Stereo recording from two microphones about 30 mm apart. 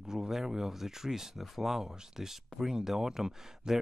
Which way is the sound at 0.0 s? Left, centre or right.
Centre.